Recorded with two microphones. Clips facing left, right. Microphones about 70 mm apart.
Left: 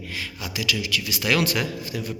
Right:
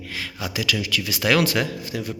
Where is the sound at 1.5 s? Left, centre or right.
Right.